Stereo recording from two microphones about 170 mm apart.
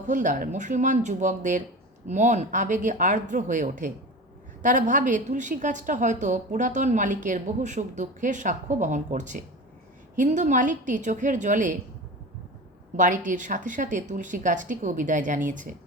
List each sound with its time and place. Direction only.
0.0 s a woman's voice: 50° right (ahead or behind)
13.0 s a woman's voice: 50° right (ahead or behind)